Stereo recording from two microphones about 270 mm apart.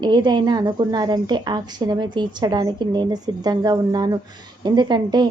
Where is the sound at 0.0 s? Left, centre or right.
Centre.